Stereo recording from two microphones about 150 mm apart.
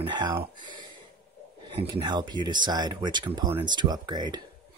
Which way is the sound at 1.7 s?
30° right (ahead or behind).